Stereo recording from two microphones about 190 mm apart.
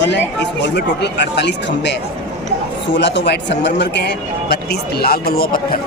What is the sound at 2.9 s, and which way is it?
Speech, 65° left (ahead or behind).